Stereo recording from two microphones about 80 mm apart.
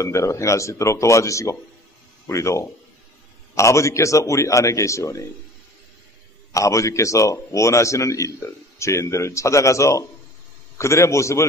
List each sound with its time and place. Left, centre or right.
0.0 s a man's voice: left
6.5 s a man's voice: left